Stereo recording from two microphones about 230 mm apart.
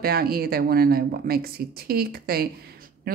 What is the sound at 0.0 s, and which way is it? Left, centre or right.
Speech, right.